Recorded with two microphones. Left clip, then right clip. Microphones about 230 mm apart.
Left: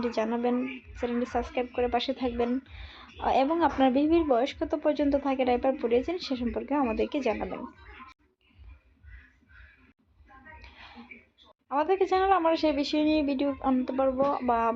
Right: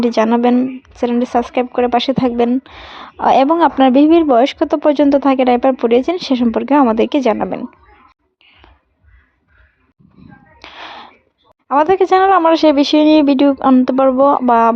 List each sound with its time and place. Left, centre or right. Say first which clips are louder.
0.0 s a woman's voice: right 15 dB; right
10.6 s music: right 17 dB; right
11.7 s a woman's voice: right 14 dB; right